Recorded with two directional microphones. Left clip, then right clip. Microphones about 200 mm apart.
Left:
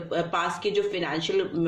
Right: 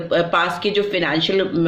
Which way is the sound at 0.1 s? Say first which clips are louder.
Right 9 dB; 35° right (ahead or behind).